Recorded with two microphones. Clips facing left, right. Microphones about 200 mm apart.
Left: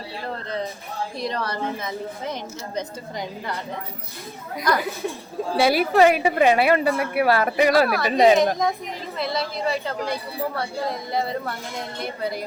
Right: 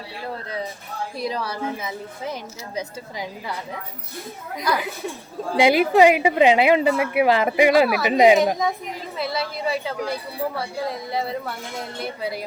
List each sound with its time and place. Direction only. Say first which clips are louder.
1.2 s speech: right 1 dB; 5° right (ahead or behind)
5.5 s a woman's voice: right 2 dB; 15° right (ahead or behind)